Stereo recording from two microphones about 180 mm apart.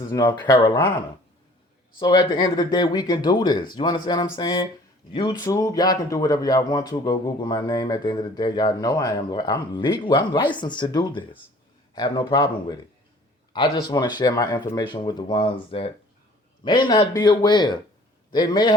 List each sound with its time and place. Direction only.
0.0 s speech: 20° left (ahead or behind)
2.0 s speech: 25° left (ahead or behind)
13.9 s a man's voice: 20° left (ahead or behind)